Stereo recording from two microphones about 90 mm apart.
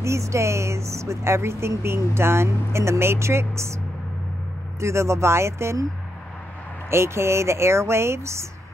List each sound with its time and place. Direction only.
0.0 s speech: 35° right (ahead or behind)
4.7 s speech: 30° right (ahead or behind)
6.9 s speech: 30° right (ahead or behind)